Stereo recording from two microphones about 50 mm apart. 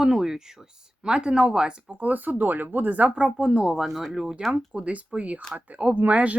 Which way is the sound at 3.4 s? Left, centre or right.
Centre.